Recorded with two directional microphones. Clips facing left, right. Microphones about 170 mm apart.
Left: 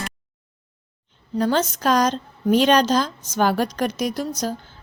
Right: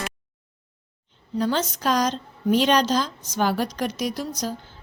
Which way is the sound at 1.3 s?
50° left (ahead or behind).